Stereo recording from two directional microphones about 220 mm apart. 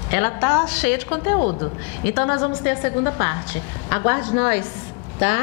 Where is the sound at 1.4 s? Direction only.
35° left (ahead or behind).